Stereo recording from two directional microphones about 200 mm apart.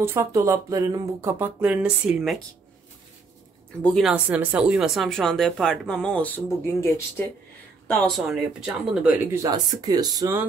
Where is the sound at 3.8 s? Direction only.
Centre (ahead or behind).